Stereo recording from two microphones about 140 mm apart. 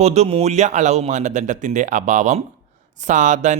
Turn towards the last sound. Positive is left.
turn(degrees=-60)  # may be behind; listen again after turning